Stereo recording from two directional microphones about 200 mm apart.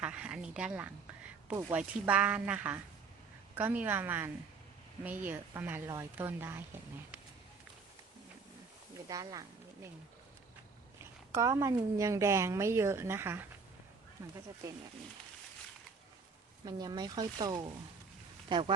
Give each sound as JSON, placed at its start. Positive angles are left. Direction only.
{"t": 0.0, "sound": "a woman's voice", "side_deg": -5}
{"t": 9.0, "sound": "a woman's voice", "side_deg": -20}
{"t": 11.3, "sound": "a woman's voice", "side_deg": -15}
{"t": 16.6, "sound": "speech", "side_deg": -20}